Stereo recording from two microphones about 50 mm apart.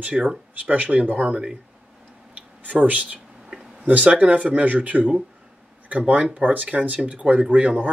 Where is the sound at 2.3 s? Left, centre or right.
Right.